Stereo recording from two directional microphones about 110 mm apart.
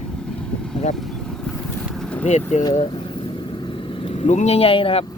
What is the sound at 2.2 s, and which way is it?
Speech, 90° left.